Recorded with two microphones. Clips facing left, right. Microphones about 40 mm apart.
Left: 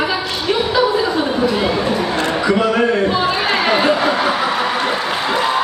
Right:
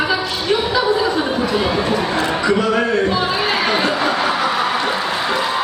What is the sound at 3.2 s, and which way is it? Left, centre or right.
Music, centre.